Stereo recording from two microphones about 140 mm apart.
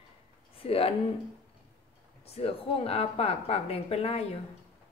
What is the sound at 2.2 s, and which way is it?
A woman's voice, 45° left (ahead or behind).